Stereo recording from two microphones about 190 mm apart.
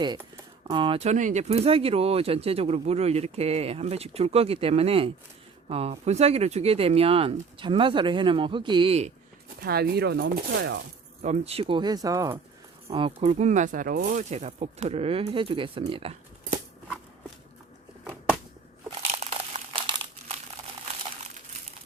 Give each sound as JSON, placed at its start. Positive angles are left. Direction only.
{"t": 0.0, "sound": "speech", "side_deg": -20}
{"t": 9.6, "sound": "speech", "side_deg": -55}
{"t": 11.2, "sound": "speech", "side_deg": -35}
{"t": 12.9, "sound": "speech", "side_deg": -30}
{"t": 18.9, "sound": "crumpling", "side_deg": -35}